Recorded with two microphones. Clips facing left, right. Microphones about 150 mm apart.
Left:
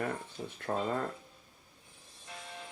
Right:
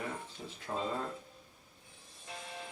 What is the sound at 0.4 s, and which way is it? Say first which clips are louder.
Speech: left 5 dB; 40° left (ahead or behind).